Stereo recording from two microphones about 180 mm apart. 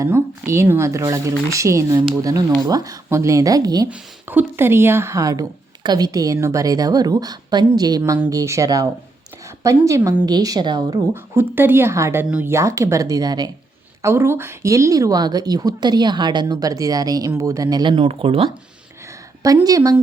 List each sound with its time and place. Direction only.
0.0 s a woman's voice: 15° right (ahead or behind)
3.8 s a woman's voice: 10° right (ahead or behind); by 18.5 s 30° right (ahead or behind)
19.4 s a woman's voice: 20° right (ahead or behind)